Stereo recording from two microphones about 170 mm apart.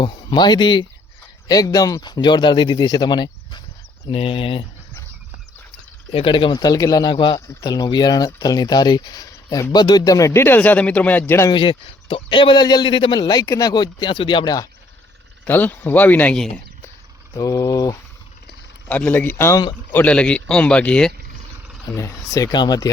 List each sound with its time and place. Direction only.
0.0 s speech: 25° left (ahead or behind)
6.1 s speech: 30° left (ahead or behind); by 11.5 s 15° left (ahead or behind)
11.5 s speech: 30° left (ahead or behind)
15.4 s speech: 10° left (ahead or behind)
17.3 s speech: 20° left (ahead or behind)
18.4 s speech: 10° left (ahead or behind)
19.9 s speech: 10° left (ahead or behind)
21.8 s speech: 15° left (ahead or behind)